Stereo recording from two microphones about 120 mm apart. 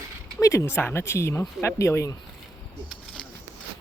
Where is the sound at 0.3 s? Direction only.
25° left (ahead or behind).